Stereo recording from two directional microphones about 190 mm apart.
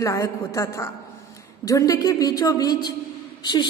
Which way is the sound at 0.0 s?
15° left (ahead or behind).